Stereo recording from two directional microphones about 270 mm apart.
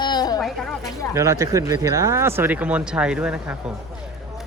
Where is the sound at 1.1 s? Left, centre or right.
Centre.